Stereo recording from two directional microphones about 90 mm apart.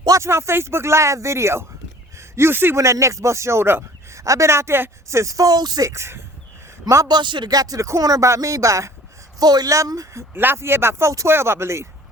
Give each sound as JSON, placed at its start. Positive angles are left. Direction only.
{"t": 0.0, "sound": "speech", "side_deg": -35}
{"t": 4.2, "sound": "speech", "side_deg": -35}
{"t": 5.9, "sound": "speech", "side_deg": -30}
{"t": 6.8, "sound": "speech", "side_deg": -40}
{"t": 7.2, "sound": "speech", "side_deg": -60}
{"t": 9.4, "sound": "speech", "side_deg": -45}
{"t": 10.3, "sound": "speech", "side_deg": -25}